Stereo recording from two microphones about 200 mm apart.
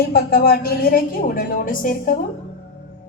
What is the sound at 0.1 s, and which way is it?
A woman's voice, 50° left (ahead or behind).